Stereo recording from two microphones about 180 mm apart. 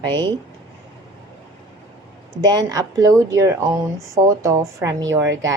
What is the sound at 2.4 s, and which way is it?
Speech, 20° right (ahead or behind).